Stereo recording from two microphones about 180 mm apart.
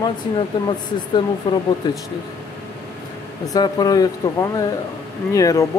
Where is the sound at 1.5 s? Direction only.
20° left (ahead or behind).